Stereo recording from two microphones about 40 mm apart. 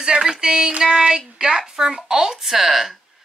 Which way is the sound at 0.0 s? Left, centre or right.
Right.